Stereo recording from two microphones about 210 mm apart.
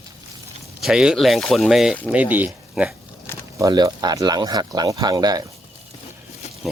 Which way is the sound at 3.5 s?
15° right (ahead or behind).